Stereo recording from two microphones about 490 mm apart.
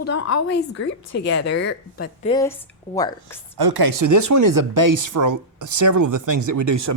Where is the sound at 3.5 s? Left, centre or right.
Right.